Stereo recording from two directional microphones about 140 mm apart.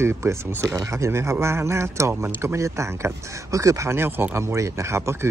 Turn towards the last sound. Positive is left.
turn(degrees=-20)  # may be behind; listen again after turning